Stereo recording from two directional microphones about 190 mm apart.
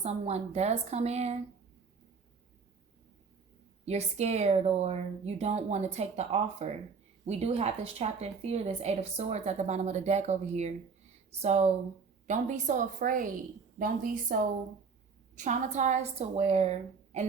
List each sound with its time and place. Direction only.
0.0 s speech: 35° right (ahead or behind)
3.8 s a woman's voice: 35° right (ahead or behind)
15.4 s speech: 40° right (ahead or behind)